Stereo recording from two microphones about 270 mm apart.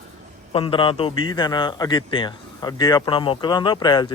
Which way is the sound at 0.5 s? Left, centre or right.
Centre.